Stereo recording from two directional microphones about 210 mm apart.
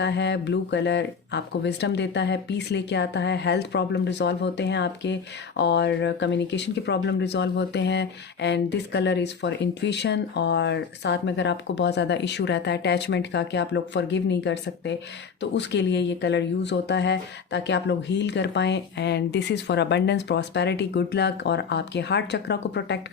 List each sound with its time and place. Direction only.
0.0 s speech: 55° left (ahead or behind)